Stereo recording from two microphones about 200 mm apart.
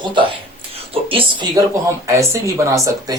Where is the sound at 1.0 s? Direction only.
25° right (ahead or behind).